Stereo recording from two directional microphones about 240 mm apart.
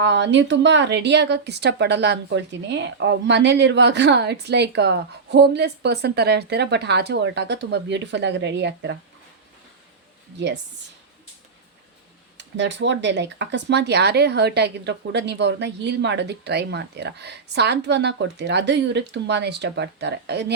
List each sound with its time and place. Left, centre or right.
0.0 s a woman's voice: right
10.3 s a woman's voice: right
12.4 s a woman's voice: right